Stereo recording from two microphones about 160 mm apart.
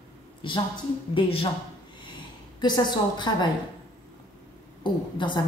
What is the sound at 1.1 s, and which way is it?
Speech, 35° left (ahead or behind).